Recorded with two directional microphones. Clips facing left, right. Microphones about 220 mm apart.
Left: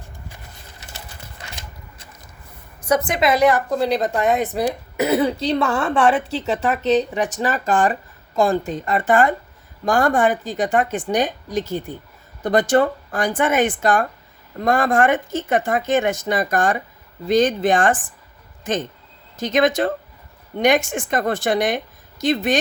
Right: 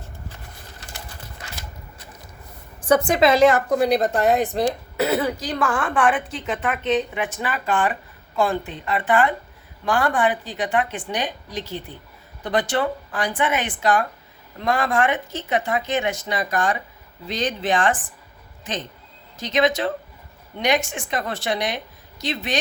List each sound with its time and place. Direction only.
2.8 s a woman's voice: 30° right (ahead or behind)
4.2 s speech: centre (ahead or behind); by 6.1 s 25° left (ahead or behind)
6.4 s a woman's voice: 40° left (ahead or behind)
19.4 s a woman's voice: 50° left (ahead or behind)